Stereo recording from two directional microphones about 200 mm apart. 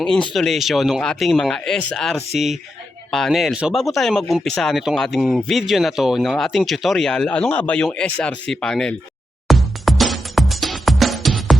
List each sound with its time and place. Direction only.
0.0 s speech: 5° left (ahead or behind)
9.5 s music: centre (ahead or behind)